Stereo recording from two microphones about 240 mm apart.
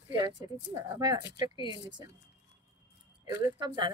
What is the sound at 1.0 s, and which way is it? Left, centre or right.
Speech, centre.